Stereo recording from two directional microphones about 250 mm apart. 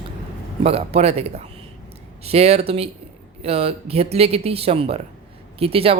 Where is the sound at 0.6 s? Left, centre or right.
Right.